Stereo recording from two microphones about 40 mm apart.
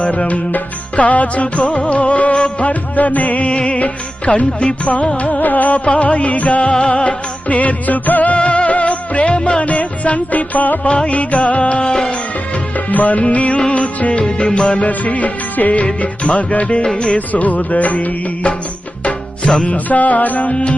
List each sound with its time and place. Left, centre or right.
0.0 s music: left
8.4 s music: left
10.8 s music: left
12.9 s music: left
16.8 s music: left
17.2 s music: left
19.6 s music: left